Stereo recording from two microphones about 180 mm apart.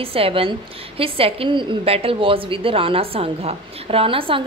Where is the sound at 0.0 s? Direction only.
30° right (ahead or behind).